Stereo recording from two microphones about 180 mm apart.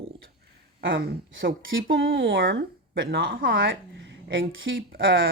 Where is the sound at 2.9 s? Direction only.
60° right (ahead or behind).